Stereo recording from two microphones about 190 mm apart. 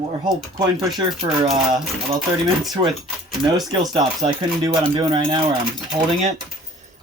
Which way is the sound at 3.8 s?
20° right (ahead or behind).